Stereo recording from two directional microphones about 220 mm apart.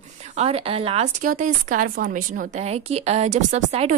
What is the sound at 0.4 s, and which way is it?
Speech, 25° right (ahead or behind).